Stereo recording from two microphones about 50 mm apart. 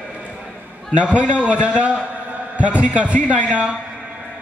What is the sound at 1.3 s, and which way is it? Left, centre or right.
Speech, right.